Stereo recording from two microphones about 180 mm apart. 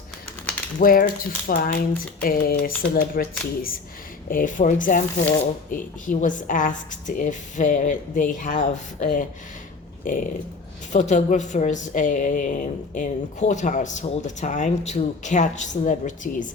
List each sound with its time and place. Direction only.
0.8 s a woman's voice: 55° left (ahead or behind)
4.3 s a woman's voice: 50° left (ahead or behind)